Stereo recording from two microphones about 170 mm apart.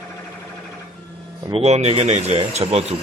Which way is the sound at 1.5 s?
35° right (ahead or behind).